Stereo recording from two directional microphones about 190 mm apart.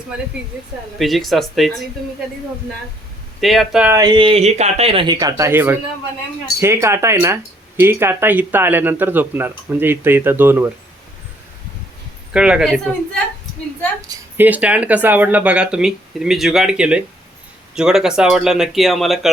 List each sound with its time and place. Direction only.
0.9 s speech: centre (ahead or behind)
3.4 s speech: centre (ahead or behind)
3.9 s speech: 20° right (ahead or behind)
5.1 s speech: 15° right (ahead or behind)
12.3 s speech: 5° right (ahead or behind)
14.3 s speech: 10° right (ahead or behind)